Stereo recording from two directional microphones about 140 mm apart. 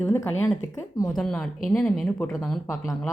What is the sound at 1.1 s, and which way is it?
A woman's voice, 5° left (ahead or behind).